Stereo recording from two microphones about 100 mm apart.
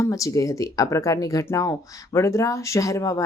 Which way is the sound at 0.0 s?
30° left (ahead or behind).